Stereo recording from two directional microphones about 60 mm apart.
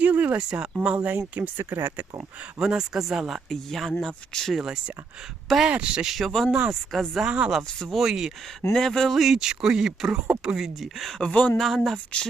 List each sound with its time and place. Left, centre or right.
0.0 s a sound: right
0.3 s speech: centre
0.9 s speech: right
2.4 s speech: centre
3.5 s speech: centre
4.5 s speech: centre
6.1 s speech: centre
6.5 s speech: centre
6.9 s speech: centre
7.3 s speech: centre
7.9 s speech: centre
8.7 s speech: centre
11.2 s speech: centre
11.5 s speech: centre